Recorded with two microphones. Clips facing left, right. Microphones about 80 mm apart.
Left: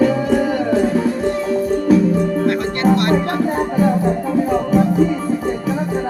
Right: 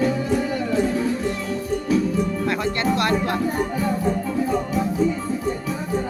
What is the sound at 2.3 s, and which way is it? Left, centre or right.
Music, left.